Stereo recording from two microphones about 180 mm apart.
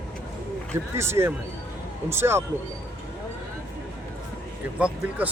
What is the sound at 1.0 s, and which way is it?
Speech, 15° right (ahead or behind).